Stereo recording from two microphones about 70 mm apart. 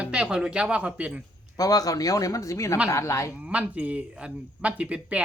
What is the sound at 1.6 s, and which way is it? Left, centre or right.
Speech, left.